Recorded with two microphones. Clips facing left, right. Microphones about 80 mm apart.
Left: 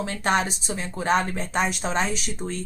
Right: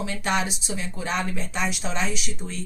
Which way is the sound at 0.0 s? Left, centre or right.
Left.